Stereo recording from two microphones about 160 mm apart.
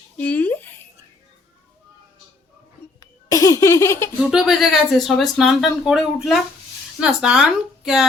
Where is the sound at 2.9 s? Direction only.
20° left (ahead or behind).